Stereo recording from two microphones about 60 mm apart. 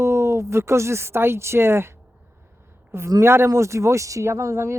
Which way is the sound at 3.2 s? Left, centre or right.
Right.